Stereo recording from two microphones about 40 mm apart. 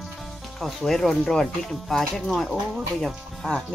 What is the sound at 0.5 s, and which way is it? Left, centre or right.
Speech, centre.